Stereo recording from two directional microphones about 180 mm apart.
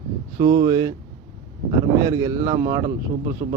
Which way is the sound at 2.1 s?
20° right (ahead or behind).